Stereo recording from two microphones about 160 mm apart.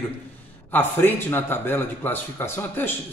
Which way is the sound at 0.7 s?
15° left (ahead or behind).